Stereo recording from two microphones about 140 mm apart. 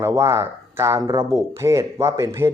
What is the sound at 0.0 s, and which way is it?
Speech, 20° right (ahead or behind).